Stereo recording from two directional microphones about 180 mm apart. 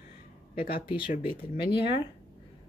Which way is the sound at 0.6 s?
55° left (ahead or behind).